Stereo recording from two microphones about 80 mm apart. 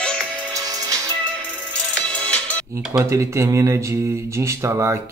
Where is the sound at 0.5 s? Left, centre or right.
Right.